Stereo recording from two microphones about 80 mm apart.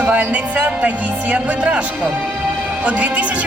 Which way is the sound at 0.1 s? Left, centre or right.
Centre.